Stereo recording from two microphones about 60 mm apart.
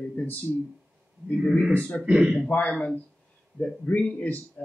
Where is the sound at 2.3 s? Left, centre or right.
Left.